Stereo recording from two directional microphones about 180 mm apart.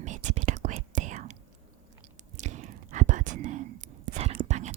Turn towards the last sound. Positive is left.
turn(degrees=-40)  # may be behind; listen again after turning